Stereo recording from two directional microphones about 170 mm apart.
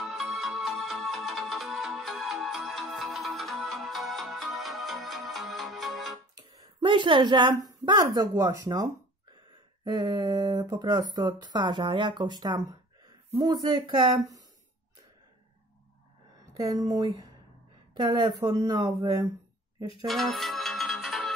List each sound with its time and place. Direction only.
0.0 s music: centre (ahead or behind)
6.3 s a woman's voice: 25° right (ahead or behind)
9.8 s speech: 25° right (ahead or behind)
16.5 s speech: 20° right (ahead or behind)
20.1 s music: centre (ahead or behind)